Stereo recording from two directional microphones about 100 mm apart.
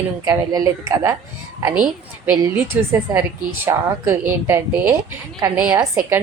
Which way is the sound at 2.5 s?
20° right (ahead or behind).